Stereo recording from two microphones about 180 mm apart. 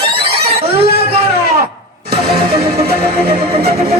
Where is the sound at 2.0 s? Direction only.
60° right (ahead or behind).